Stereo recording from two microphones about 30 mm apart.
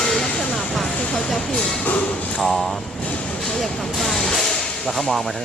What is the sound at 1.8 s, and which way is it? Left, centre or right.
Music, left.